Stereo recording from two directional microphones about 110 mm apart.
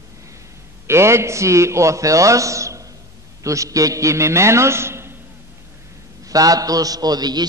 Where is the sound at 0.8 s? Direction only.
25° right (ahead or behind).